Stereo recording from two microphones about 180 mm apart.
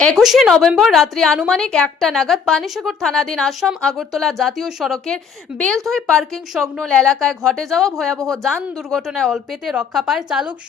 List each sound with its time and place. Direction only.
0.0 s a woman's voice: centre (ahead or behind)